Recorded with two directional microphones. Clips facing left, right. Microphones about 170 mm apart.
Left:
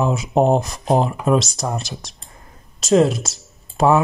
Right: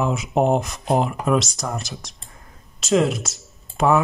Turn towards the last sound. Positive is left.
turn(degrees=35)  # may be behind; listen again after turning